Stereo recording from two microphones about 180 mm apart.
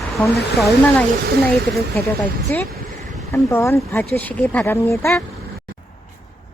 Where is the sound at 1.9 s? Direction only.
10° left (ahead or behind).